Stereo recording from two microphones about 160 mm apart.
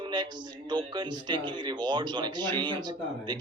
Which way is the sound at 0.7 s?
30° right (ahead or behind).